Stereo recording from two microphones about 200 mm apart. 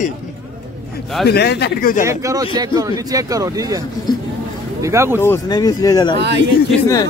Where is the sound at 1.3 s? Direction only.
55° left (ahead or behind).